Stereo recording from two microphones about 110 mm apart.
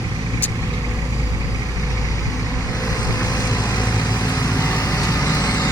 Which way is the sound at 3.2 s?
30° left (ahead or behind).